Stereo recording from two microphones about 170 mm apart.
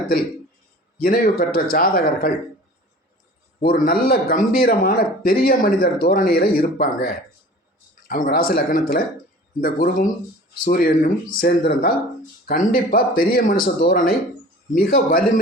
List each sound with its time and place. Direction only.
0.9 s speech: 60° left (ahead or behind)
3.6 s speech: 60° left (ahead or behind)